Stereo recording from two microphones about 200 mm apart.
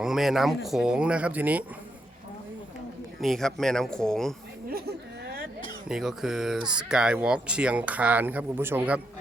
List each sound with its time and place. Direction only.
0.0 s speech: centre (ahead or behind)
3.2 s speech: centre (ahead or behind)
5.2 s a sound: 50° right (ahead or behind)
5.9 s speech: centre (ahead or behind)